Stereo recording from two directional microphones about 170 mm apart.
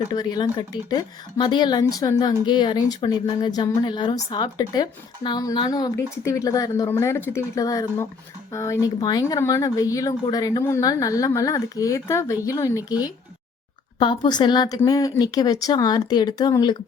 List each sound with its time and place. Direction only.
0.1 s a woman's voice: 25° left (ahead or behind)
14.0 s a woman's voice: 25° left (ahead or behind)